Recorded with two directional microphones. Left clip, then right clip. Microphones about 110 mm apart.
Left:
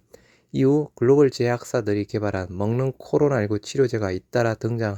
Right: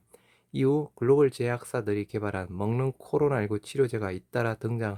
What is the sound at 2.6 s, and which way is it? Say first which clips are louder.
Speech: left 4 dB; 20° left (ahead or behind).